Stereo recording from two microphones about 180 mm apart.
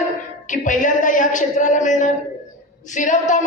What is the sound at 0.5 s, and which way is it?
A woman's voice, 45° left (ahead or behind).